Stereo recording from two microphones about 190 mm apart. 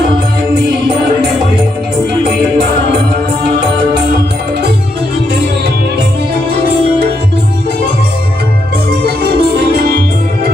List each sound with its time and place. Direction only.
9.0 s music: 55° right (ahead or behind)